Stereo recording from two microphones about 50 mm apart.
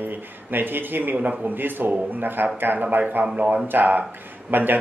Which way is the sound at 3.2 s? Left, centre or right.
Centre.